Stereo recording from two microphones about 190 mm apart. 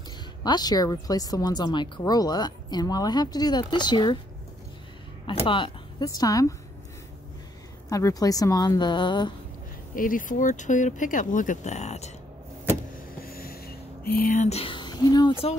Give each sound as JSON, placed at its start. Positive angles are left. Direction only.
{"t": 0.4, "sound": "speech", "side_deg": 20}
{"t": 5.2, "sound": "speech", "side_deg": 25}
{"t": 7.9, "sound": "speech", "side_deg": 20}
{"t": 9.9, "sound": "speech", "side_deg": 45}
{"t": 12.9, "sound": "a sound", "side_deg": 50}